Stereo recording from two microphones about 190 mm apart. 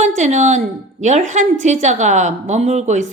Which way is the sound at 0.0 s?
40° right (ahead or behind).